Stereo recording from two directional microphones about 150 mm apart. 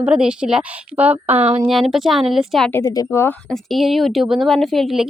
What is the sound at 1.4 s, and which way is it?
Speech, 45° right (ahead or behind).